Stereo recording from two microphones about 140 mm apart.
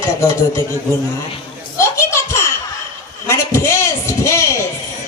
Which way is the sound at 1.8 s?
20° left (ahead or behind).